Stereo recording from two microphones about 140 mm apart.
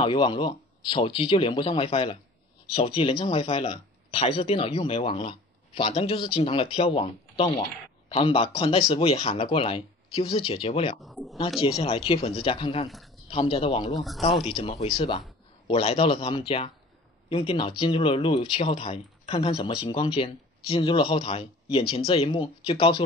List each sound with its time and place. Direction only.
0.0 s speech: 35° left (ahead or behind)
11.0 s speech: centre (ahead or behind)
11.6 s speech: 45° left (ahead or behind)
13.9 s speech: centre (ahead or behind)
14.4 s speech: 45° left (ahead or behind)